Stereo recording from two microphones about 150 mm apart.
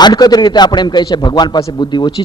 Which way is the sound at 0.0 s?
25° left (ahead or behind).